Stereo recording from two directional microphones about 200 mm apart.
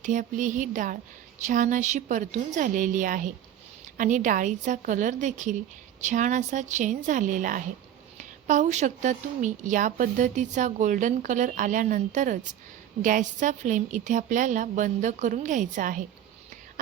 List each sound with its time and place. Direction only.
0.0 s a woman's voice: 40° right (ahead or behind)